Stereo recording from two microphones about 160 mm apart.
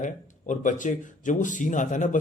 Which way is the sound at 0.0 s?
50° left (ahead or behind).